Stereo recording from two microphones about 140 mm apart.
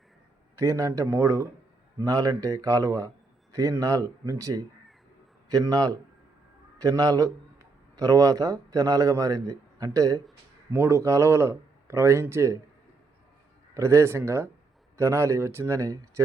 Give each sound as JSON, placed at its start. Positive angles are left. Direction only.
{"t": 0.5, "sound": "a man's voice", "side_deg": -20}
{"t": 13.7, "sound": "a man's voice", "side_deg": -20}